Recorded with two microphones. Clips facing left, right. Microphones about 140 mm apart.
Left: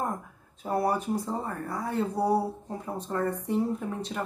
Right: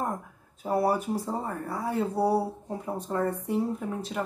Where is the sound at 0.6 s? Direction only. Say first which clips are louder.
Right 2 dB; 5° right (ahead or behind).